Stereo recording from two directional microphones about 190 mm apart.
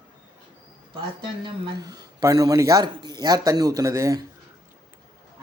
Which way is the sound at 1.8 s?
20° right (ahead or behind).